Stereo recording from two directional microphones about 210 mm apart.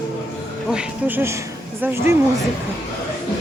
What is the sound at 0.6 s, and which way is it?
Speech, 5° right (ahead or behind).